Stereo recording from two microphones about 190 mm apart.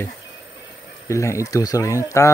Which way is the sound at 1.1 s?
15° left (ahead or behind).